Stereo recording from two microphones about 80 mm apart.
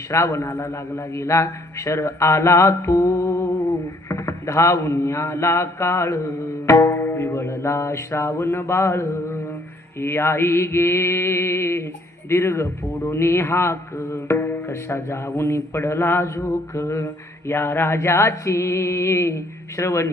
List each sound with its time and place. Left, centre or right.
0.1 s mantra: left
6.7 s music: left
6.9 s mantra: left